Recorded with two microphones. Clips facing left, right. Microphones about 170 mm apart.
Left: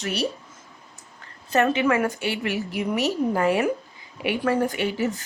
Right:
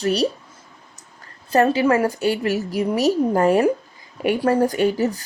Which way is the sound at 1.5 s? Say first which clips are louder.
Right 4 dB; 35° right (ahead or behind).